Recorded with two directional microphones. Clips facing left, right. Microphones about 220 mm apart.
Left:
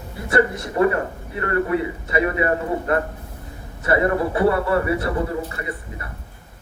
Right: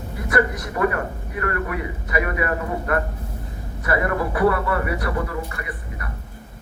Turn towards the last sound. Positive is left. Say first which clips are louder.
# left 2 dB
turn(degrees=25)  # may be behind; listen again after turning